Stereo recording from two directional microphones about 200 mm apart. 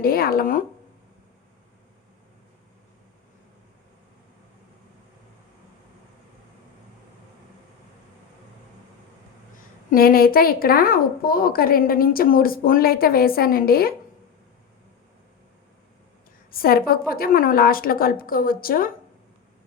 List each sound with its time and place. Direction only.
0.0 s a woman's voice: 50° left (ahead or behind)
9.9 s a woman's voice: 45° left (ahead or behind)
16.5 s a woman's voice: 50° left (ahead or behind)